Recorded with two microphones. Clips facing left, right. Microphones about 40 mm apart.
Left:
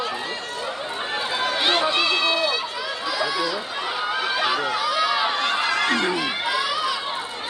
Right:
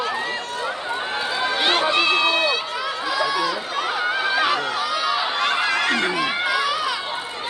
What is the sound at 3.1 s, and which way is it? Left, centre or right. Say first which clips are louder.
Chatter: right 3 dB; right.